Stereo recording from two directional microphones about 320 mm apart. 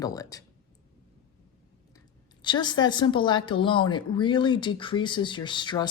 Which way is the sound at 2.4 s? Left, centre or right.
Centre.